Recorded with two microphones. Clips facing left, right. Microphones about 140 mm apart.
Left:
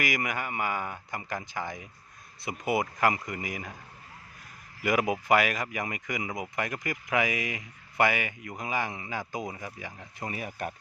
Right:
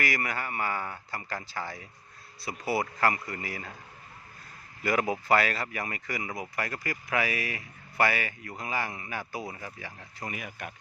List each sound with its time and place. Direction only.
0.0 s speech: 15° left (ahead or behind)
4.8 s speech: 15° left (ahead or behind)
10.3 s speech: 40° left (ahead or behind)